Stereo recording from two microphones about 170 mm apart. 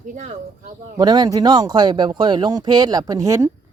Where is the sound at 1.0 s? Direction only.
25° right (ahead or behind).